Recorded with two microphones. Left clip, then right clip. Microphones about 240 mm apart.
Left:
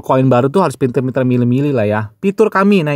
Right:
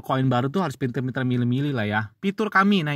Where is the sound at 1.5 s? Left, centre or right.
Left.